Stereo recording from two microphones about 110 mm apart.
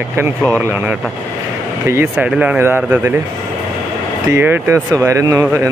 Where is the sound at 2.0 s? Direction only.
10° right (ahead or behind).